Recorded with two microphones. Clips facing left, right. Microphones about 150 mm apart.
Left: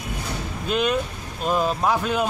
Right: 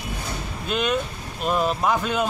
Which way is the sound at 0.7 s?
5° left (ahead or behind).